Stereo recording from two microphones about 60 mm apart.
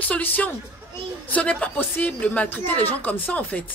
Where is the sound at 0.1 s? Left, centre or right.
Left.